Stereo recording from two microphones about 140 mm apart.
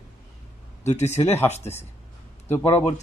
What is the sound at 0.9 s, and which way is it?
Speech, 55° left (ahead or behind).